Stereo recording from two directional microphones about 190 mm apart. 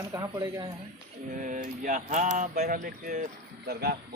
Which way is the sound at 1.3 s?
45° right (ahead or behind).